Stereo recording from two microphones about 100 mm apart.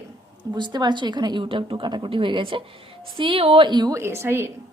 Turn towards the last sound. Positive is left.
turn(degrees=-25)  # may be behind; listen again after turning